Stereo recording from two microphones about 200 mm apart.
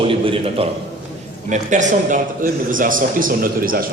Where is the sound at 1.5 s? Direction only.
40° right (ahead or behind).